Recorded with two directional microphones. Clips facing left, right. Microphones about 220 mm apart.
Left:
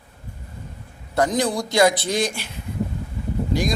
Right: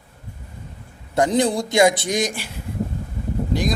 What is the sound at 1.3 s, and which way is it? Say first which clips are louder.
A man's voice: right 3 dB; 25° right (ahead or behind).